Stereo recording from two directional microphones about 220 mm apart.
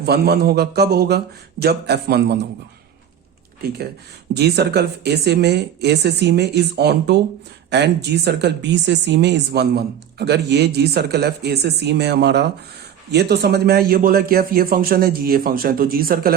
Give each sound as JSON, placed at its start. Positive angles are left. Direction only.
{"t": 0.0, "sound": "speech", "side_deg": -45}
{"t": 4.4, "sound": "speech", "side_deg": -50}